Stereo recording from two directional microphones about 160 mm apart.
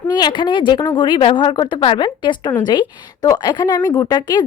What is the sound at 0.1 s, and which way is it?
A woman's voice, 25° left (ahead or behind).